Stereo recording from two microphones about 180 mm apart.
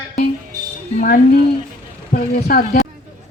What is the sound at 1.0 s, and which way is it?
Speech, 50° left (ahead or behind).